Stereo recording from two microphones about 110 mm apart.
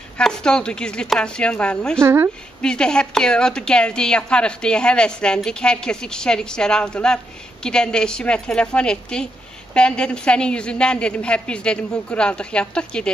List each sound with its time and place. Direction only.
0.2 s a woman's voice: 5° left (ahead or behind)
2.0 s speech: 20° right (ahead or behind)
2.6 s a woman's voice: 5° left (ahead or behind)